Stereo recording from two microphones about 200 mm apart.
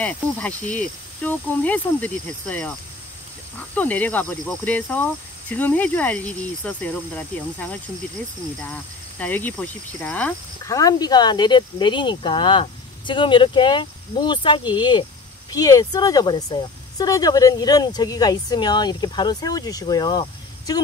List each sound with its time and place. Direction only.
0.0 s cricket: 5° left (ahead or behind)
9.2 s speech: 10° left (ahead or behind)